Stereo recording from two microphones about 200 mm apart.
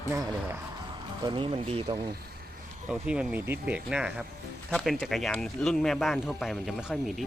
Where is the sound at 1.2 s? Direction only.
25° right (ahead or behind).